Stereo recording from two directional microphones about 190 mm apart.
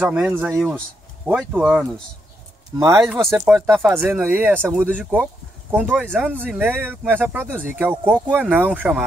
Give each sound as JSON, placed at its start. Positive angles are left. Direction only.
{"t": 0.0, "sound": "speech", "side_deg": -5}
{"t": 2.8, "sound": "speech", "side_deg": -15}
{"t": 3.3, "sound": "speech", "side_deg": -5}